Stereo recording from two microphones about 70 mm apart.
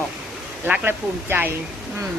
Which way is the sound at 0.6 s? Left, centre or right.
Right.